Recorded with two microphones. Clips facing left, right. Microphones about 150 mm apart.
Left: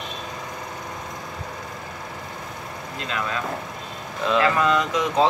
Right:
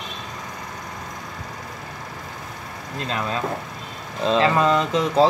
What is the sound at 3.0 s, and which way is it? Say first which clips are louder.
A man's voice: right 2 dB; 30° right (ahead or behind).